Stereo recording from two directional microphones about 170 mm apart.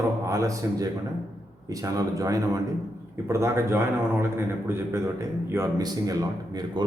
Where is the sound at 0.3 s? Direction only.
20° right (ahead or behind).